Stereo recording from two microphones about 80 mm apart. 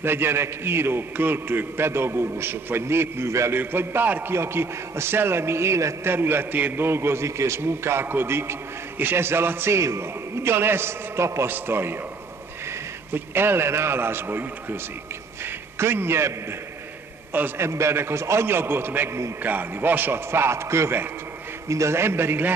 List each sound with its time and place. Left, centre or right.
0.0 s a man's voice: right